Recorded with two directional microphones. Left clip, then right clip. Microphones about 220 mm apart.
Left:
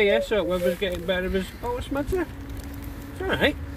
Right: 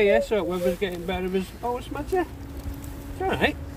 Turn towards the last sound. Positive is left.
turn(degrees=15)  # may be behind; listen again after turning